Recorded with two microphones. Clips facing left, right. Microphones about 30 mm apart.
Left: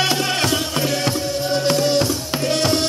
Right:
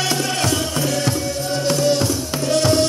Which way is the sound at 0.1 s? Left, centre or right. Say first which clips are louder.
Left 1 dB; left.